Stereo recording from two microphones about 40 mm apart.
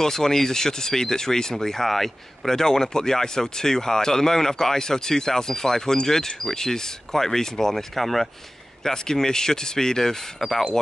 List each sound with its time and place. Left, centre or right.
0.0 s speech: centre
8.8 s speech: centre